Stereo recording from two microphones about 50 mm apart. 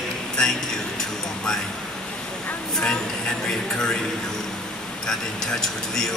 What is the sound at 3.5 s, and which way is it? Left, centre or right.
Speech, centre.